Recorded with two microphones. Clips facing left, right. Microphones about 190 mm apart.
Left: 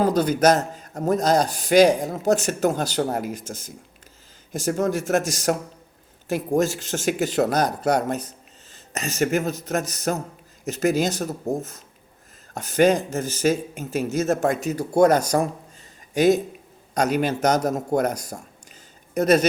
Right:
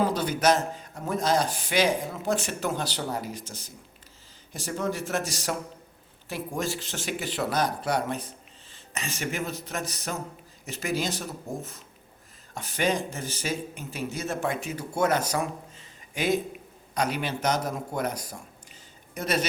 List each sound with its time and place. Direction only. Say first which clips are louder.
0.0 s a man's voice: left 6 dB; 40° left (ahead or behind)